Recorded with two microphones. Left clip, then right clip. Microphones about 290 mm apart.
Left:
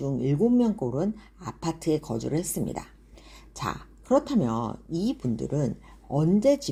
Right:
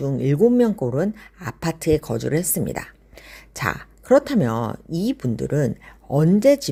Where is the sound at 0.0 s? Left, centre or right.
Right.